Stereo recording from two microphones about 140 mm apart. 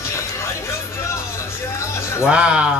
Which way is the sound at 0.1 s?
20° left (ahead or behind).